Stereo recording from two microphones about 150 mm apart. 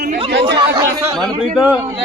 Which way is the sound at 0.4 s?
25° right (ahead or behind).